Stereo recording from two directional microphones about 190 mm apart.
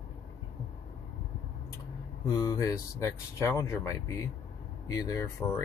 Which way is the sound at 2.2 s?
20° left (ahead or behind).